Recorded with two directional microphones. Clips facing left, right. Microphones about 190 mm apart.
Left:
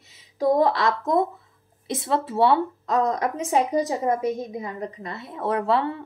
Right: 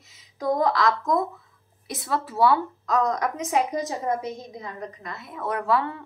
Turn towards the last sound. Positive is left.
turn(degrees=30)  # may be behind; listen again after turning